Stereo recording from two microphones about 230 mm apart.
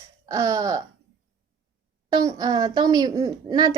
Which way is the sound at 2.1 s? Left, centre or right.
Centre.